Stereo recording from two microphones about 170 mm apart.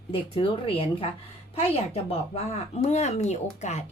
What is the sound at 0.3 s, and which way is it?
Speech, 35° left (ahead or behind).